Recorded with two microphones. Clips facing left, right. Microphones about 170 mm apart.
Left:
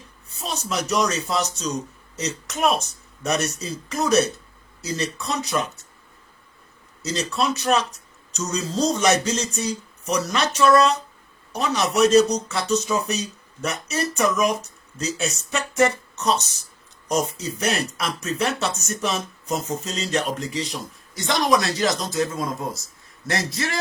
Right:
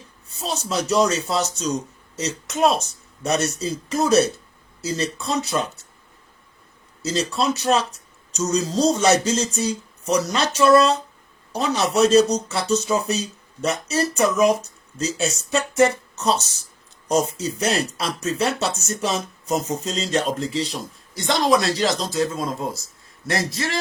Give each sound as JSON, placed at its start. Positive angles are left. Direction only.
{"t": 0.3, "sound": "speech", "side_deg": -30}
{"t": 7.0, "sound": "speech", "side_deg": -30}